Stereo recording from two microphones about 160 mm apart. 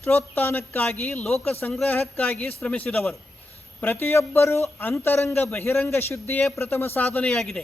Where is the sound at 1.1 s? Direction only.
Centre (ahead or behind).